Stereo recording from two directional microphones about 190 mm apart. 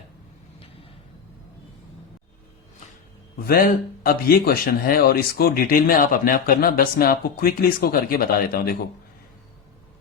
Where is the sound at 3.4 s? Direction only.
50° left (ahead or behind).